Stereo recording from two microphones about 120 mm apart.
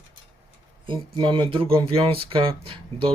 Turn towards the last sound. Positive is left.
turn(degrees=-50)  # may be behind; listen again after turning